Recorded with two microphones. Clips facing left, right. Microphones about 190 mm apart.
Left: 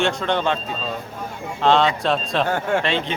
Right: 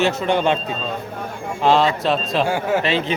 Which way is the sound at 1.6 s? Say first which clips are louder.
Right 1 dB; 5° right (ahead or behind).